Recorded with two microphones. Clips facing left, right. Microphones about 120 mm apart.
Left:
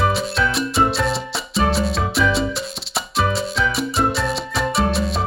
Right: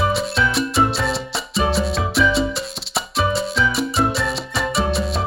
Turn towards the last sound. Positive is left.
turn(degrees=0)  # may be behind; listen again after turning